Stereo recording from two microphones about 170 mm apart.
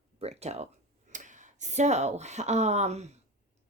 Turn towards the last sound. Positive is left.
turn(degrees=-40)  # may be behind; listen again after turning